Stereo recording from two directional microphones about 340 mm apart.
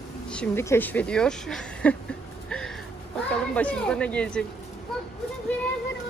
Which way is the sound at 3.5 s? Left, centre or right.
Centre.